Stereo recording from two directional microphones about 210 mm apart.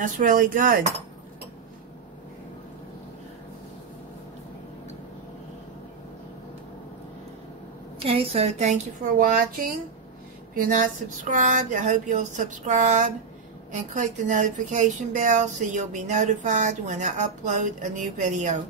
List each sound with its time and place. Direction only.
0.0 s a woman's voice: 40° right (ahead or behind)
8.0 s a woman's voice: 25° right (ahead or behind)